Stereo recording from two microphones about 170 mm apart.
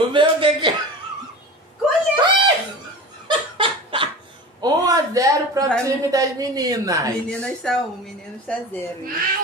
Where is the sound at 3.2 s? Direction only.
30° right (ahead or behind).